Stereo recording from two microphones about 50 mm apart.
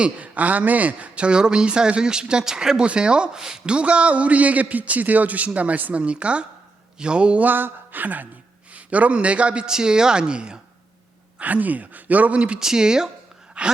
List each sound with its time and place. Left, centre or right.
0.0 s speech: right
7.4 s speech: right; by 10.6 s centre
11.3 s speech: right
12.5 s speech: centre
13.6 s a sound: right